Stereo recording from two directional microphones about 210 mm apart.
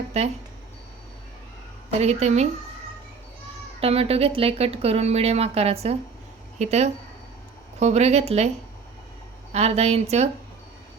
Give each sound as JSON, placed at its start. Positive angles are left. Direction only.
{"t": 0.1, "sound": "speech", "side_deg": -30}
{"t": 1.9, "sound": "speech", "side_deg": -30}
{"t": 3.8, "sound": "speech", "side_deg": -30}